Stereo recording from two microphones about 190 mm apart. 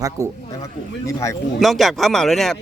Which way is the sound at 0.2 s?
15° right (ahead or behind).